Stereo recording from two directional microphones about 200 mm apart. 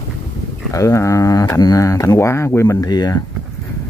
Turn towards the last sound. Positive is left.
turn(degrees=20)  # may be behind; listen again after turning